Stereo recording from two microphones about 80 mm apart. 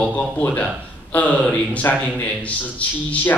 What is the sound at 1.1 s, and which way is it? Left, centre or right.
A man's voice, centre.